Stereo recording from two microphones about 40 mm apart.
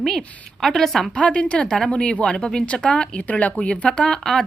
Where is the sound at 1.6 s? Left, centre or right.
Centre.